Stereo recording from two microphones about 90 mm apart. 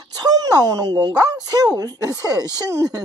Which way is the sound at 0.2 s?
45° right (ahead or behind).